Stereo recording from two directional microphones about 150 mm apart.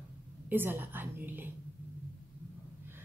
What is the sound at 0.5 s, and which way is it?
A woman's voice, 15° right (ahead or behind).